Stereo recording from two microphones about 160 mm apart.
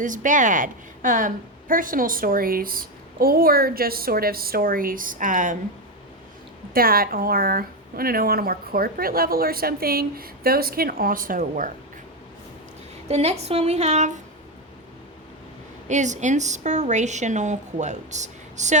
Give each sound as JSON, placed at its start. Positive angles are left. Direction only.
{"t": 0.0, "sound": "a woman's voice", "side_deg": -55}
{"t": 6.7, "sound": "speech", "side_deg": -65}
{"t": 13.1, "sound": "a woman's voice", "side_deg": -45}
{"t": 15.9, "sound": "a woman's voice", "side_deg": -50}